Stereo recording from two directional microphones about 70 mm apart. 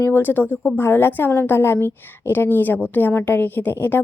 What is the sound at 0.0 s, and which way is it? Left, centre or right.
A woman's voice, left.